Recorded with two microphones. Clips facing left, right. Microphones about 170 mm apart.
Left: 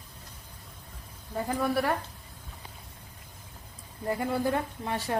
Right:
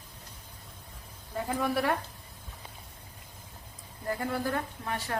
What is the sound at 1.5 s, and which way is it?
Speech, 5° left (ahead or behind).